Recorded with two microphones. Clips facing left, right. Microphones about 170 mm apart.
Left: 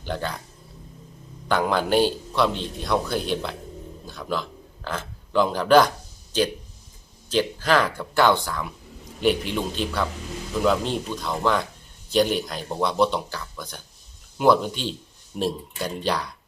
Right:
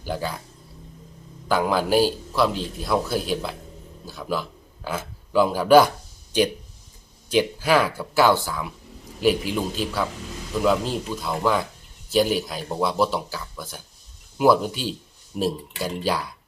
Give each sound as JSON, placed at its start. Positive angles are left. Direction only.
{"t": 0.0, "sound": "speech", "side_deg": -5}
{"t": 1.5, "sound": "a man's voice", "side_deg": -5}